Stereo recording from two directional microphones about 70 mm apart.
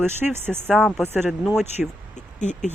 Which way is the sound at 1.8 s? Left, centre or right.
Centre.